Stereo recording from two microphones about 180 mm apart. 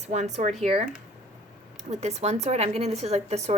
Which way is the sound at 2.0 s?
35° right (ahead or behind).